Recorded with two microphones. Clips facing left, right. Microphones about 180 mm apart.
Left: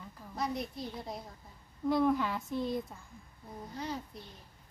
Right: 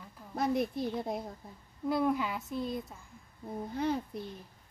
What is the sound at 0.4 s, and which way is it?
Child singing, 55° right (ahead or behind).